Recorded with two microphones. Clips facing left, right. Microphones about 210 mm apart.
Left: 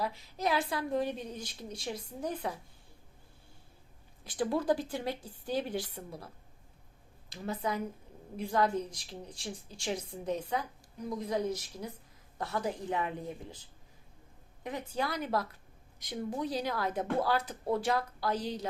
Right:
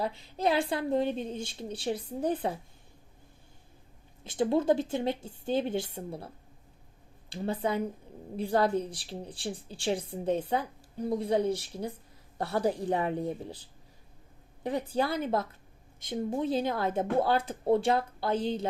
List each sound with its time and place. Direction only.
0.0 s speech: 30° right (ahead or behind)
4.2 s a woman's voice: 25° right (ahead or behind)
14.6 s speech: 35° right (ahead or behind)